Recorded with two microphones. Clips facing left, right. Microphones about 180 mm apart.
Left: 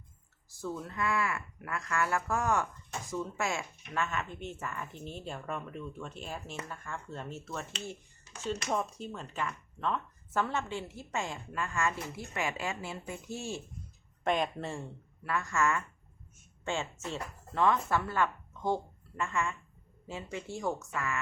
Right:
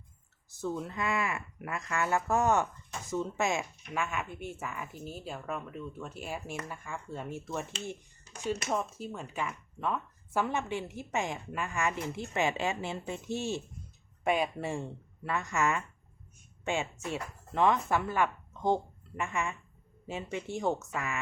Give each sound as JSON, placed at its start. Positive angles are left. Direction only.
{"t": 0.5, "sound": "speech", "side_deg": -20}
{"t": 8.7, "sound": "speech", "side_deg": -5}
{"t": 14.3, "sound": "speech", "side_deg": -10}